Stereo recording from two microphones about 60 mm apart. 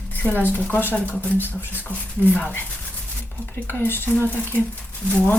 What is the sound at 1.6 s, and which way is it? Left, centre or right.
Speech, left.